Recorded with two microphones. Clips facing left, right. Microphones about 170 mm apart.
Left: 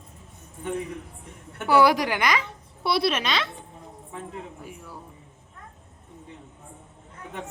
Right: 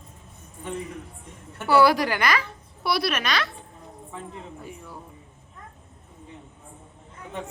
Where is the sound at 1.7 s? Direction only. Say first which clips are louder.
Even; 15° left (ahead or behind).